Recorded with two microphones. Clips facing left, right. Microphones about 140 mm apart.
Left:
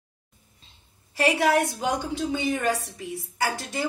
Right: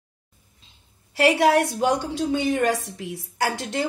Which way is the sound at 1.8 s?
65° right (ahead or behind).